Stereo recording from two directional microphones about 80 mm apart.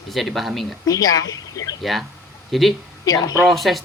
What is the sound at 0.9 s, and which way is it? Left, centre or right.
Speech, left.